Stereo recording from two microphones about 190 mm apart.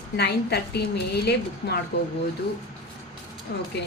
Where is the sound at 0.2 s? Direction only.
60° left (ahead or behind).